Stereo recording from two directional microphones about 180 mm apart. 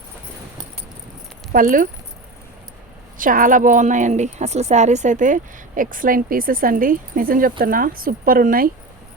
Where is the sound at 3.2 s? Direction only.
50° right (ahead or behind).